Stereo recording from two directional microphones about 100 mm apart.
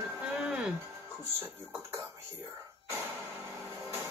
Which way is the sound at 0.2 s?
10° right (ahead or behind).